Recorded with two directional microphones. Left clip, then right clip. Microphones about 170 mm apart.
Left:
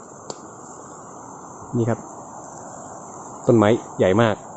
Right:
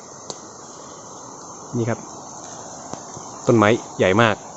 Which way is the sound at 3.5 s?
15° left (ahead or behind).